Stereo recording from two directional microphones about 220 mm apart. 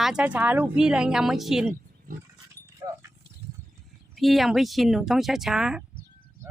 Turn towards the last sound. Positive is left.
turn(degrees=-5)  # may be behind; listen again after turning